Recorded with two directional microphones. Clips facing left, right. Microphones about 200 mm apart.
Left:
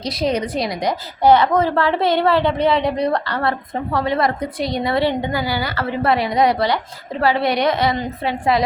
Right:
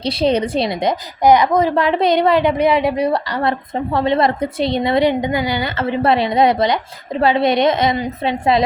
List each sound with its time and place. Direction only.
0.0 s a woman's voice: 30° right (ahead or behind); by 3.5 s 10° right (ahead or behind)
3.8 s a woman's voice: 25° right (ahead or behind)